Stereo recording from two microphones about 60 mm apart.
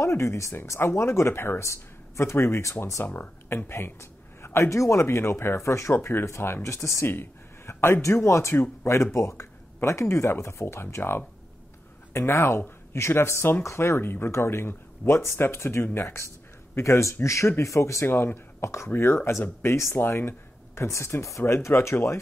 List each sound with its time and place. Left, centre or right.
0.0 s speech: left
18.0 s speech: left
18.6 s speech: left
20.0 s speech: left